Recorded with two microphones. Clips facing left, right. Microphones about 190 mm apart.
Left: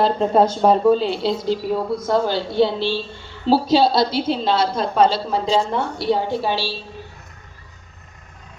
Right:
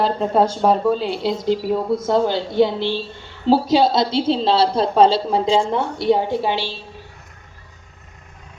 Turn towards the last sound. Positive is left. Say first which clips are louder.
# right 1 dB
turn(degrees=-20)  # may be behind; listen again after turning